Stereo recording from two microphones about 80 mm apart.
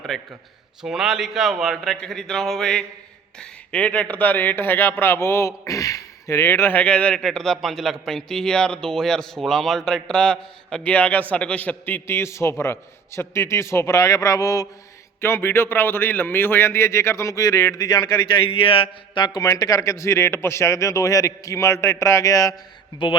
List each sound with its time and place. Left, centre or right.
0.1 s speech: centre
0.8 s speech: centre; by 6.4 s left
6.4 s speech: left
7.2 s speech: centre
10.9 s a man's voice: centre; by 14.7 s left
15.2 s speech: left
17.7 s a man's voice: left
18.6 s a sound: left
19.1 s speech: left
19.4 s a man's voice: left
23.0 s a sound: left